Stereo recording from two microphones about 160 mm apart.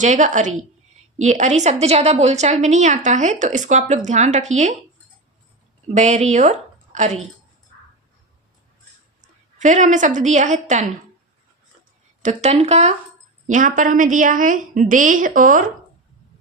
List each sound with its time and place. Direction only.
0.0 s a woman's voice: 50° right (ahead or behind)
5.9 s speech: 45° right (ahead or behind)
9.2 s a woman's voice: 50° right (ahead or behind)
12.2 s a woman's voice: 45° right (ahead or behind)
13.5 s a woman's voice: 55° right (ahead or behind)